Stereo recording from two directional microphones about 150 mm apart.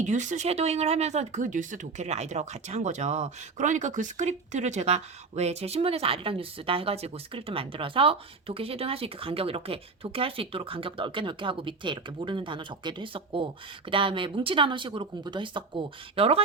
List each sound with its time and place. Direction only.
0.0 s speech: 55° right (ahead or behind)